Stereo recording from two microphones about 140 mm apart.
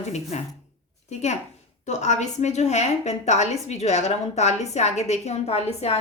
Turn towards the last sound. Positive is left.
turn(degrees=50)  # may be behind; listen again after turning